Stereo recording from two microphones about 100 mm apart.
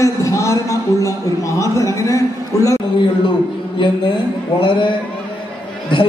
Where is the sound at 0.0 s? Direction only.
35° left (ahead or behind).